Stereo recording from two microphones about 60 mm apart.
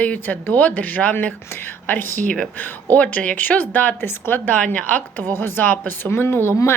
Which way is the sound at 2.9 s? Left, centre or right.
Left.